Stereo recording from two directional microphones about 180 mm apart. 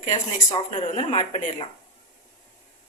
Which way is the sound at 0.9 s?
35° left (ahead or behind).